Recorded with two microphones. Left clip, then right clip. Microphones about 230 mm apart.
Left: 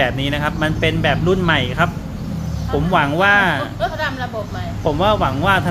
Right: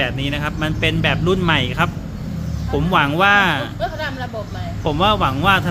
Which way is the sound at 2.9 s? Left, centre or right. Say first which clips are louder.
Even; right.